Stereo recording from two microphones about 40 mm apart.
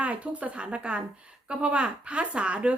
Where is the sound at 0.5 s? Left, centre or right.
Right.